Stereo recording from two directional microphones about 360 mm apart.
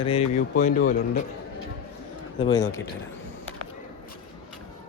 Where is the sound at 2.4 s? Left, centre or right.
Centre.